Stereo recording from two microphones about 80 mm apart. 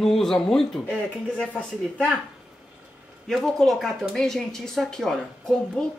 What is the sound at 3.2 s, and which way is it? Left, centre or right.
A woman's voice, centre.